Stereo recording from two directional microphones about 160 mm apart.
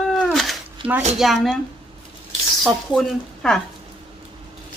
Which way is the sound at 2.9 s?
Centre (ahead or behind).